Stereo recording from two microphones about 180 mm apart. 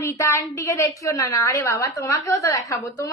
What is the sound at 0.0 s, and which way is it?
A woman's voice, 15° left (ahead or behind).